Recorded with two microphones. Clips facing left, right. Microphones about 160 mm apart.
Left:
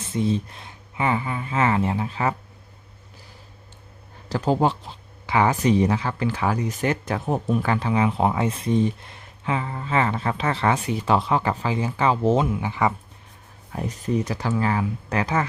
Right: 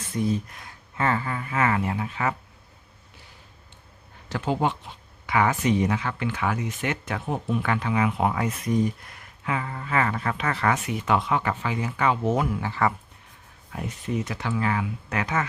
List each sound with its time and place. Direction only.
0.0 s speech: 25° left (ahead or behind)
4.3 s speech: 35° left (ahead or behind); by 12.9 s 15° left (ahead or behind)
13.7 s speech: 35° left (ahead or behind)